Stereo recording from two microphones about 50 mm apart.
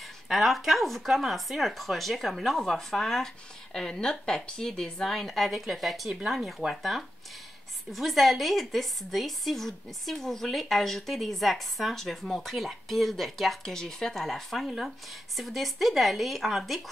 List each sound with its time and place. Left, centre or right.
0.3 s a woman's voice: centre